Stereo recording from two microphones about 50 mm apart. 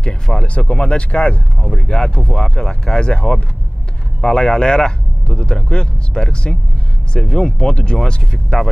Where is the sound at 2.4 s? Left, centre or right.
Centre.